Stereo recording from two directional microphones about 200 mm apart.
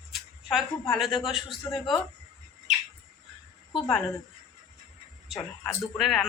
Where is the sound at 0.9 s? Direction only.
Centre (ahead or behind).